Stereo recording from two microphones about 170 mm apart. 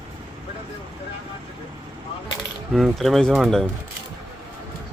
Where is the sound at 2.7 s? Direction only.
Centre (ahead or behind).